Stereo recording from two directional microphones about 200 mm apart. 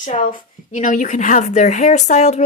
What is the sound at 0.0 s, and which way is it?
Speech, 40° left (ahead or behind).